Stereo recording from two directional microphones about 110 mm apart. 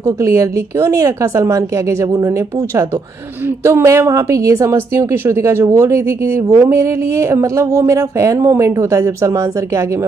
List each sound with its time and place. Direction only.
0.0 s a woman's voice: 30° right (ahead or behind)